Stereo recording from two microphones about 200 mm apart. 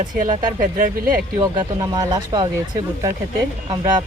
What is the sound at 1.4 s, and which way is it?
Speech, 20° right (ahead or behind).